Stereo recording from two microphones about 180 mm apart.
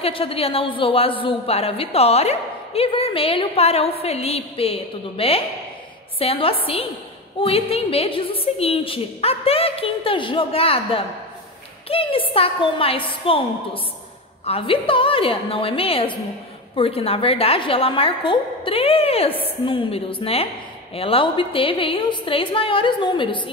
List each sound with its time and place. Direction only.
0.0 s a woman's voice: 30° left (ahead or behind)
14.4 s a woman's voice: 30° left (ahead or behind)